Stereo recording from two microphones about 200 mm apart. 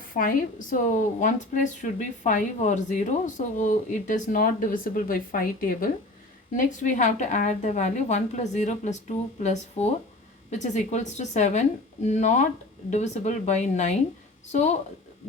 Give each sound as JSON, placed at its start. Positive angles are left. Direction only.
{"t": 0.2, "sound": "speech", "side_deg": 45}